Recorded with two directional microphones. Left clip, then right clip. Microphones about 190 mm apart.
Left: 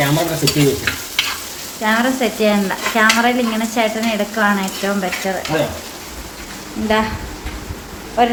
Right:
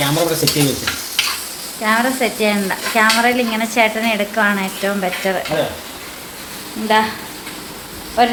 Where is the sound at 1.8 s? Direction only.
10° right (ahead or behind).